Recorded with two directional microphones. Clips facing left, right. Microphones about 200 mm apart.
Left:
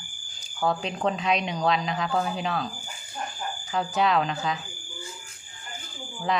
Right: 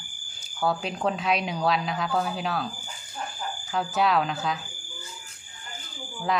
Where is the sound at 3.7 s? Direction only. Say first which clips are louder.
Even; centre (ahead or behind).